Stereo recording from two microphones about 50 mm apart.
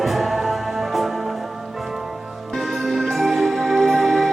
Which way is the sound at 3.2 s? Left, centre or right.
Centre.